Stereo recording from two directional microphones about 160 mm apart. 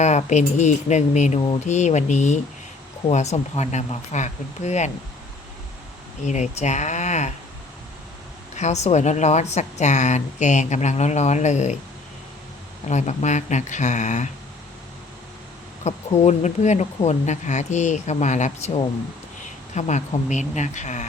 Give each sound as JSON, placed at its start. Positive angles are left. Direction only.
{"t": 0.0, "sound": "a woman's voice", "side_deg": 45}
{"t": 6.2, "sound": "a woman's voice", "side_deg": 45}
{"t": 8.5, "sound": "a woman's voice", "side_deg": 45}
{"t": 12.9, "sound": "a woman's voice", "side_deg": 45}
{"t": 15.8, "sound": "a woman's voice", "side_deg": 45}